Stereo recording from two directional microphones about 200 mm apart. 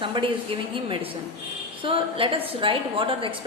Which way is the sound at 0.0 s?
25° right (ahead or behind).